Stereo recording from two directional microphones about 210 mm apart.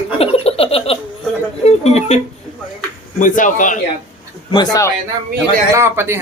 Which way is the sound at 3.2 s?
40° left (ahead or behind).